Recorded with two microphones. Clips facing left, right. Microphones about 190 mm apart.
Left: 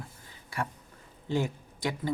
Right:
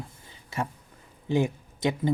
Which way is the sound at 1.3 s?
15° right (ahead or behind).